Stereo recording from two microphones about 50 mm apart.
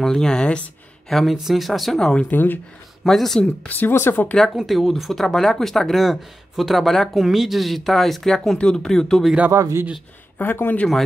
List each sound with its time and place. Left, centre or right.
0.0 s speech: centre
1.0 s speech: centre
2.3 s speech: left
3.0 s speech: centre
3.4 s speech: left
4.6 s speech: centre
8.5 s speech: centre
9.5 s speech: right
10.4 s speech: left